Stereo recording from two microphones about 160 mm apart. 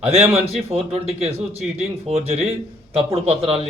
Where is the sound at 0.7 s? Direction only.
40° right (ahead or behind).